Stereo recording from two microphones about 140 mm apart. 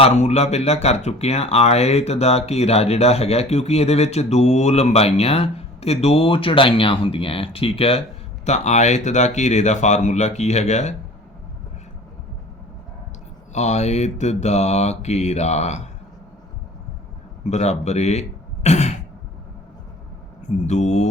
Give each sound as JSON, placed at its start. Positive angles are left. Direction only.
{"t": 0.0, "sound": "speech", "side_deg": 50}
{"t": 8.4, "sound": "speech", "side_deg": 55}
{"t": 13.5, "sound": "speech", "side_deg": 55}
{"t": 17.4, "sound": "speech", "side_deg": 50}
{"t": 20.7, "sound": "speech", "side_deg": 55}